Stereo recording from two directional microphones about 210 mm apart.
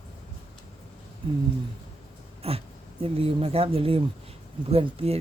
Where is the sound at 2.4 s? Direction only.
30° right (ahead or behind).